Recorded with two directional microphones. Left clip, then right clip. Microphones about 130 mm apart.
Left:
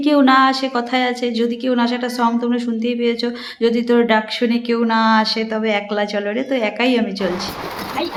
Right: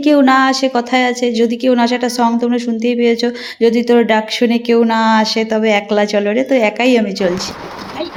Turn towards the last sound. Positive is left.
turn(degrees=-30)  # may be behind; listen again after turning